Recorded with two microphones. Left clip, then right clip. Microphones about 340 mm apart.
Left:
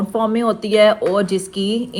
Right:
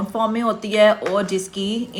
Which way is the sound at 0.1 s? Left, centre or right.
Centre.